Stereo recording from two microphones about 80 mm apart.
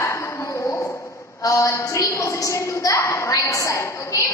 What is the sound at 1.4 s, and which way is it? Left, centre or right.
A woman's voice, left.